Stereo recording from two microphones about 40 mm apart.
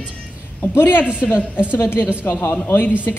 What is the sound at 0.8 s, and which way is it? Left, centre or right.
A woman's voice, left.